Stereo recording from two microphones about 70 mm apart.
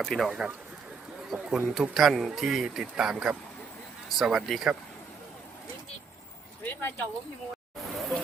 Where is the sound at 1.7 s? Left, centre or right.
Centre.